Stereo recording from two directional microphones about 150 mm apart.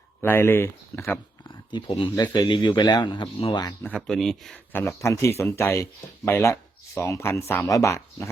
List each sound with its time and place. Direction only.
0.2 s speech: 15° left (ahead or behind)
1.5 s speech: 30° left (ahead or behind)
3.8 s speech: 5° left (ahead or behind)
4.9 s speech: 20° left (ahead or behind)